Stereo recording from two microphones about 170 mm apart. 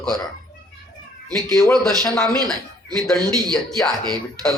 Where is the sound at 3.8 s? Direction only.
20° right (ahead or behind).